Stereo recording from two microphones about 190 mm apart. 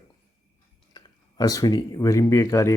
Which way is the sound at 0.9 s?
20° left (ahead or behind).